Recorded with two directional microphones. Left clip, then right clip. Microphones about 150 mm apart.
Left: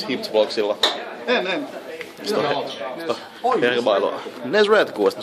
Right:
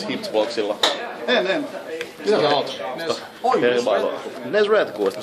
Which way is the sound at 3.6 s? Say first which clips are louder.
Left 1 dB; 75° left (ahead or behind).